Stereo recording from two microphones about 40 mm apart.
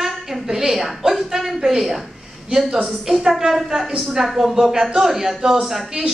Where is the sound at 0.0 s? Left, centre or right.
Centre.